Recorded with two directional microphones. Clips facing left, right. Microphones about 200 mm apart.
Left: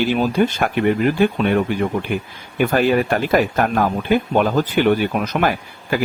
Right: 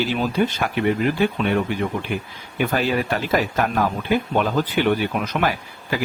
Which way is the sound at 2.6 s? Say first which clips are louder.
Left 5 dB; 50° left (ahead or behind).